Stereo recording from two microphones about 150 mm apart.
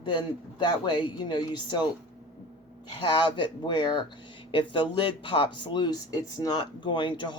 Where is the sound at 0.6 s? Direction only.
30° left (ahead or behind).